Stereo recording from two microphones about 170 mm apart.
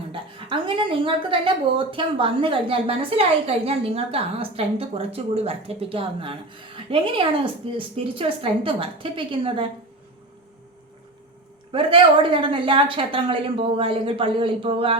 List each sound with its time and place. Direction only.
0.1 s a woman's voice: 30° right (ahead or behind)
11.7 s a woman's voice: 30° right (ahead or behind)